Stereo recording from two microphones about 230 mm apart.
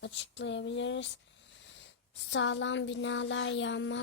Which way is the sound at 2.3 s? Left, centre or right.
Left.